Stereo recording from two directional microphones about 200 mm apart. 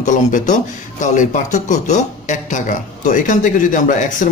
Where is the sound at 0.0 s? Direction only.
40° left (ahead or behind).